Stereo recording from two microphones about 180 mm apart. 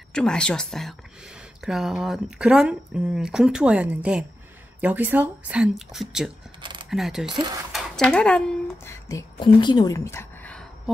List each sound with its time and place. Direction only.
0.1 s a woman's voice: 5° left (ahead or behind)
6.6 s a sound: 25° right (ahead or behind)
6.9 s speech: centre (ahead or behind)
7.2 s speech: 25° right (ahead or behind)
7.7 s a sound: 5° left (ahead or behind)
9.4 s a woman's voice: 25° left (ahead or behind); by 10.7 s 5° left (ahead or behind)